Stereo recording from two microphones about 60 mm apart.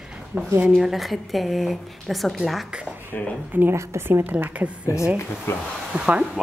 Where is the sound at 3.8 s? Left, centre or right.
Right.